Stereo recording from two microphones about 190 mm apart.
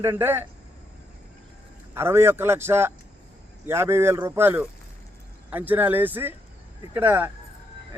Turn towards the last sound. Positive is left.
turn(degrees=-10)  # may be behind; listen again after turning